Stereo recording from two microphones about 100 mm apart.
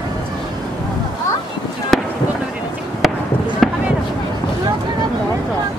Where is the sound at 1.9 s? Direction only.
5° left (ahead or behind).